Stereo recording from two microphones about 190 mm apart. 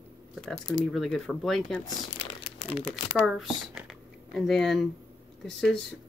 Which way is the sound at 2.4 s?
30° left (ahead or behind).